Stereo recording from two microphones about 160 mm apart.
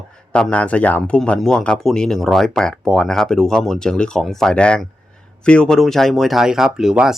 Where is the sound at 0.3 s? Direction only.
5° left (ahead or behind).